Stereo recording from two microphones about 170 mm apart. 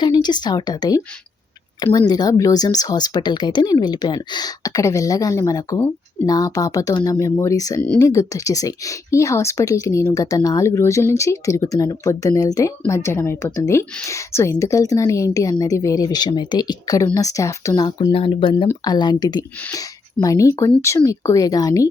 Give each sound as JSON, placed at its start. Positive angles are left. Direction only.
{"t": 0.0, "sound": "speech", "side_deg": 25}